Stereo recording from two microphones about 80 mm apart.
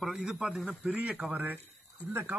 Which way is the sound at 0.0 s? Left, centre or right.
Centre.